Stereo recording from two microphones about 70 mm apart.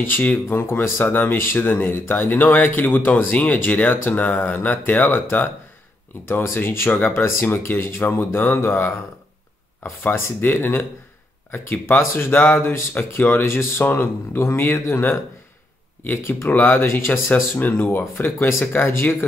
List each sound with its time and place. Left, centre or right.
0.1 s speech: left
0.6 s speech: left
10.0 s speech: left
17.6 s speech: left